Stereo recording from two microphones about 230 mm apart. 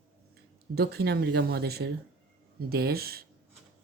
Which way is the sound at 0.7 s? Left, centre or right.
Right.